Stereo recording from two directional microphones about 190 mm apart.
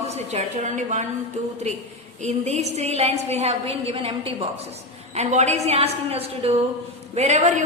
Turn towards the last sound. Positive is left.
turn(degrees=-40)  # may be behind; listen again after turning